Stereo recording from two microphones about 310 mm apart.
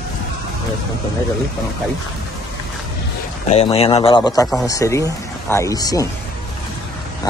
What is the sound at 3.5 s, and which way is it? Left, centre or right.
Speech, centre.